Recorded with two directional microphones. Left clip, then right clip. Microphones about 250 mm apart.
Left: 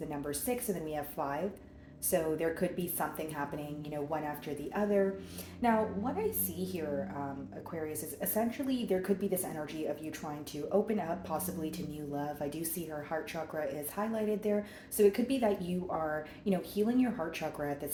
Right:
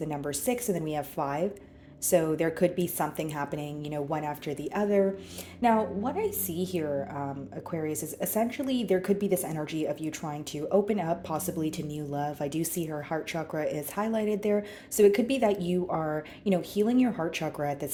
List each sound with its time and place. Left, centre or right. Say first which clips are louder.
0.1 s speech: right 4 dB; right